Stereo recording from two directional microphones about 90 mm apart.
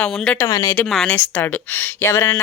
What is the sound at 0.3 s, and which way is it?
Speech, 35° left (ahead or behind).